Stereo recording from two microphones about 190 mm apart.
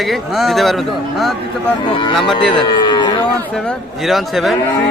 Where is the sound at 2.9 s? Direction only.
20° left (ahead or behind).